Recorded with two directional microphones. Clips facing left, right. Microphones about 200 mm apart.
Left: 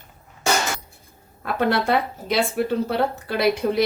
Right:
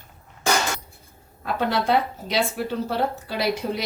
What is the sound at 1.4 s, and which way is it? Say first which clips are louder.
A woman's voice: left 3 dB; 55° left (ahead or behind).